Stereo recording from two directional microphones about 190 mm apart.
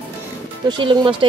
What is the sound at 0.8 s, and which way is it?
Speech, 25° right (ahead or behind).